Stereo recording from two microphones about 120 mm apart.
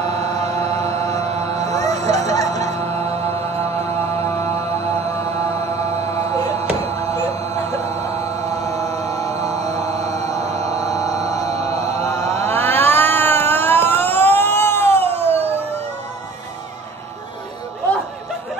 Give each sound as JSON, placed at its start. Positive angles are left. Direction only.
{"t": 0.0, "sound": "mantra", "side_deg": -65}
{"t": 2.3, "sound": "music", "side_deg": 30}
{"t": 2.6, "sound": "mantra", "side_deg": -65}
{"t": 4.0, "sound": "mantra", "side_deg": 25}
{"t": 6.0, "sound": "music", "side_deg": 25}
{"t": 6.5, "sound": "music", "side_deg": -60}
{"t": 8.3, "sound": "a sound", "side_deg": -65}
{"t": 8.6, "sound": "music", "side_deg": 25}
{"t": 10.1, "sound": "music", "side_deg": -65}
{"t": 10.9, "sound": "music", "side_deg": 30}
{"t": 11.4, "sound": "mantra", "side_deg": -65}
{"t": 12.3, "sound": "chant", "side_deg": -65}
{"t": 12.5, "sound": "vehicle", "side_deg": 15}
{"t": 15.0, "sound": "a sound", "side_deg": 15}